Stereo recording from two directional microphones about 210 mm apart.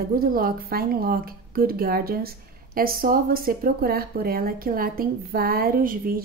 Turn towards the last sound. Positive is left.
turn(degrees=-45)  # may be behind; listen again after turning